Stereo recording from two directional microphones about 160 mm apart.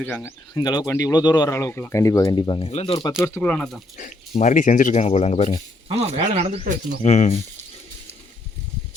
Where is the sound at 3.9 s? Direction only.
50° left (ahead or behind).